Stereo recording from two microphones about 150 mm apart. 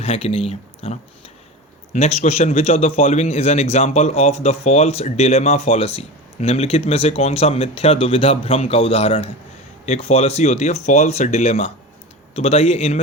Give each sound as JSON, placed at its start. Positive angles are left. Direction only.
{"t": 0.0, "sound": "a man's voice", "side_deg": 45}